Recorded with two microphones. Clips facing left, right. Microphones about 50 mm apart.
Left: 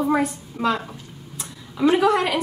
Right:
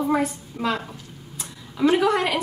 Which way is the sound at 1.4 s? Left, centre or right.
Centre.